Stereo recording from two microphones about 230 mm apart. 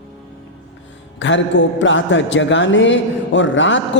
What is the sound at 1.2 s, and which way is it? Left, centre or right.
A man's voice, left.